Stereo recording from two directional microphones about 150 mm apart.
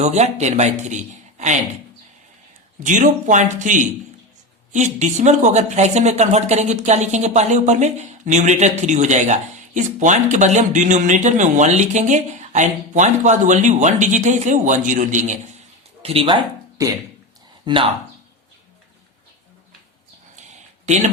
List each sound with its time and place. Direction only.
0.0 s a man's voice: 50° right (ahead or behind)
2.8 s speech: 60° right (ahead or behind)
16.0 s speech: 35° right (ahead or behind)
16.8 s a man's voice: 20° right (ahead or behind)
20.8 s speech: 50° right (ahead or behind)